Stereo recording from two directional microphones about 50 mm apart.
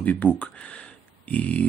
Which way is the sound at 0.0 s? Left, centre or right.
Left.